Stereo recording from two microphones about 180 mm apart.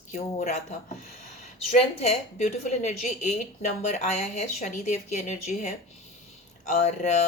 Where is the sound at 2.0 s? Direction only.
40° left (ahead or behind).